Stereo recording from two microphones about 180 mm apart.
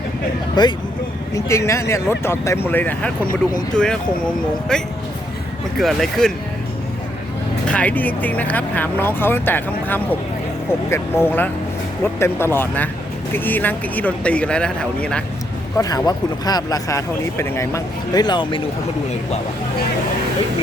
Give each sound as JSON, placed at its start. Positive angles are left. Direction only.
{"t": 0.6, "sound": "speech", "side_deg": 25}
{"t": 7.7, "sound": "speech", "side_deg": 10}
{"t": 15.8, "sound": "speech", "side_deg": 20}